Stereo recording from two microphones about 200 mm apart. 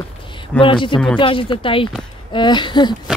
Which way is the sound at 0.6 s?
25° left (ahead or behind).